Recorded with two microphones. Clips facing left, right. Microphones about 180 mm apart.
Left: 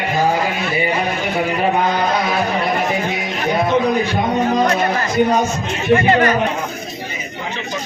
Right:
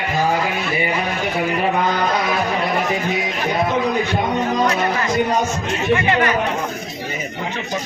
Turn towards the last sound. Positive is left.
turn(degrees=40)  # may be behind; listen again after turning